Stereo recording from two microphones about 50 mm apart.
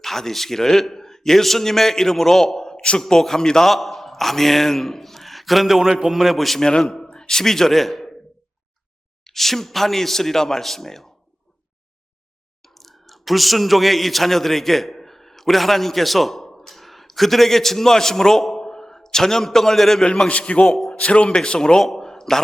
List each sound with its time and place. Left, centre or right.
0.0 s a man's voice: centre
2.7 s a sound: centre
3.0 s a man's voice: centre
7.1 s speech: centre
9.2 s speech: centre
12.6 s speech: centre
20.1 s speech: left
21.8 s a sound: centre